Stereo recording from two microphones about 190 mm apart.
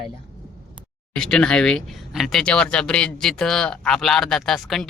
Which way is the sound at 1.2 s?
5° left (ahead or behind).